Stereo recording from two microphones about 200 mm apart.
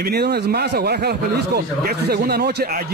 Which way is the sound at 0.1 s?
55° right (ahead or behind).